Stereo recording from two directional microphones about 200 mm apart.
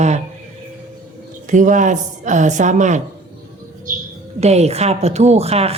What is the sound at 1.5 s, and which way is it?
A woman's voice, 40° right (ahead or behind).